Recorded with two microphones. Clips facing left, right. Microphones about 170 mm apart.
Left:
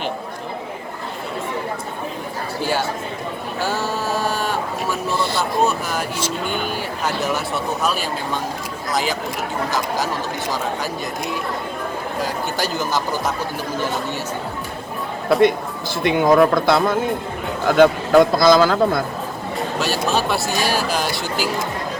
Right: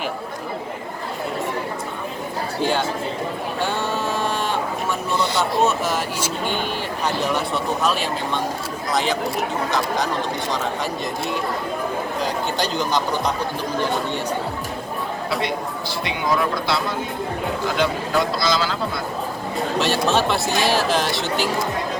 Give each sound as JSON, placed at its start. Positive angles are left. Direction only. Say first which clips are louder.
{"t": 3.6, "sound": "a sound", "louder": "left 1 dB", "side_deg": 0}
{"t": 5.1, "sound": "a sound", "louder": "right 2 dB", "side_deg": -20}
{"t": 5.5, "sound": "speech", "louder": "even", "side_deg": 0}
{"t": 12.2, "sound": "speech", "louder": "left 1 dB", "side_deg": 5}
{"t": 15.3, "sound": "a man's voice", "louder": "left 12 dB", "side_deg": 50}
{"t": 19.5, "sound": "speech", "louder": "right 2 dB", "side_deg": 0}